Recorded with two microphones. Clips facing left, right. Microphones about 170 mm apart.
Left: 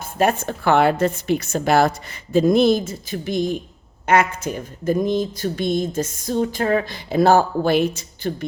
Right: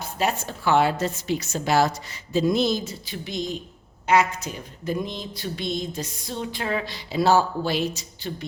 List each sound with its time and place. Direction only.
0.0 s a woman's voice: 50° left (ahead or behind)